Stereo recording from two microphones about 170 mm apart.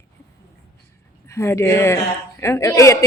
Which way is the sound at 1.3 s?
15° left (ahead or behind).